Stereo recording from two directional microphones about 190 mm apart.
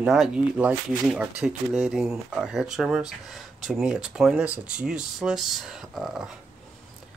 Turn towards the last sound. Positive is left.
turn(degrees=0)  # may be behind; listen again after turning